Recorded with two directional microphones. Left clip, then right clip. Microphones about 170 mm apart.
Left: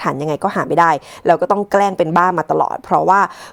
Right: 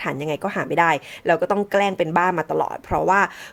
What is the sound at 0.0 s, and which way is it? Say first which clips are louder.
Speech: left 7 dB; 35° left (ahead or behind).